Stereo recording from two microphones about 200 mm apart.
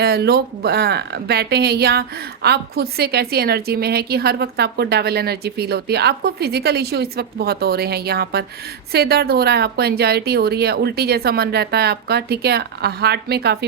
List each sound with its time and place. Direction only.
0.0 s speech: 55° right (ahead or behind)